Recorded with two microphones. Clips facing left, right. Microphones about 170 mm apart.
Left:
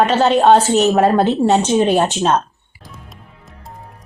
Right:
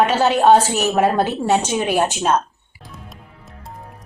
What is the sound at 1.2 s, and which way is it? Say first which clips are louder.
Speech: left 4 dB; 25° left (ahead or behind).